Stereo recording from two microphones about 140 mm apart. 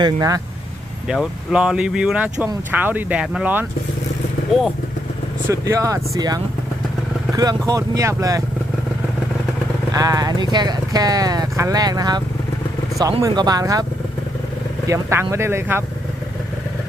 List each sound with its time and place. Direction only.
0.0 s speech: 25° right (ahead or behind)
1.0 s speech: 5° right (ahead or behind)
4.5 s speech: centre (ahead or behind)
5.5 s speech: 20° right (ahead or behind)
7.7 s speech: 25° right (ahead or behind)
9.9 s speech: 25° right (ahead or behind)
13.2 s speech: 30° right (ahead or behind)
14.8 s speech: 20° right (ahead or behind)